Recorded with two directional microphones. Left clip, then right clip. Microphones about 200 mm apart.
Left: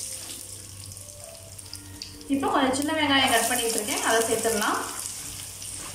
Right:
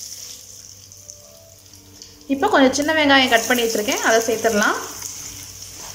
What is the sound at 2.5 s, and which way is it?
A woman's voice, 45° right (ahead or behind).